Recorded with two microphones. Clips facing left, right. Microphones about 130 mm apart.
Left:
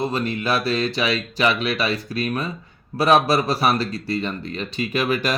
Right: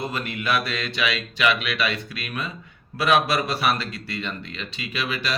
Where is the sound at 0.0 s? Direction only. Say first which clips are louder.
Left 5 dB; 35° left (ahead or behind).